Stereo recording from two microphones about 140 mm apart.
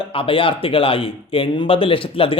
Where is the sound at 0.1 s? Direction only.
40° left (ahead or behind).